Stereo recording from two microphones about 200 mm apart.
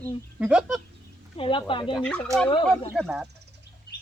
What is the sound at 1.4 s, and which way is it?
Speech, 25° left (ahead or behind).